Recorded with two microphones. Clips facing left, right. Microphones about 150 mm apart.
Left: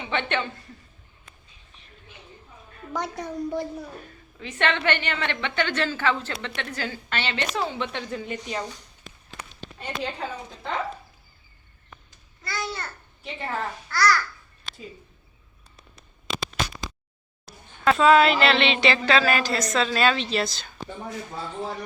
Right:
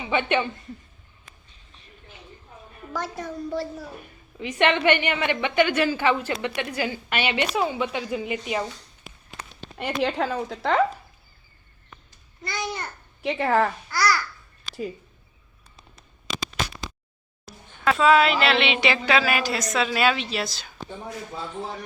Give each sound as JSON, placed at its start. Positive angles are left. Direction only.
{"t": 0.0, "sound": "a woman's voice", "side_deg": -10}
{"t": 2.9, "sound": "a woman's voice", "side_deg": 20}
{"t": 4.4, "sound": "a woman's voice", "side_deg": -15}
{"t": 9.7, "sound": "a woman's voice", "side_deg": -85}
{"t": 12.4, "sound": "a child's voice", "side_deg": -20}
{"t": 13.2, "sound": "a woman's voice", "side_deg": -90}
{"t": 13.9, "sound": "a woman's voice", "side_deg": -10}
{"t": 17.8, "sound": "a woman's voice", "side_deg": 0}